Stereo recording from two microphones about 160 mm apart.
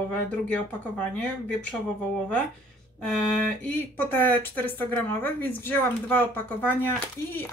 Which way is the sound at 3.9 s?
10° left (ahead or behind).